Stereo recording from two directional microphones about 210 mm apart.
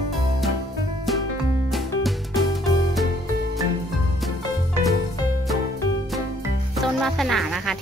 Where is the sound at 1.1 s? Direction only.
Centre (ahead or behind).